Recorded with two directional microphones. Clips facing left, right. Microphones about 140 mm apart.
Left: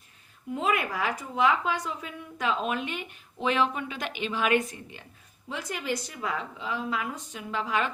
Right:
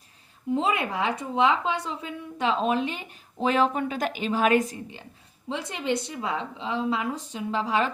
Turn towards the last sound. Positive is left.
turn(degrees=-35)  # may be behind; listen again after turning